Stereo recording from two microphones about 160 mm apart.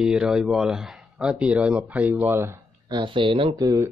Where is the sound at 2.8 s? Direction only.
30° right (ahead or behind).